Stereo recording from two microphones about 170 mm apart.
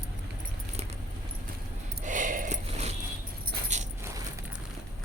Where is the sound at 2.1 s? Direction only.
50° right (ahead or behind).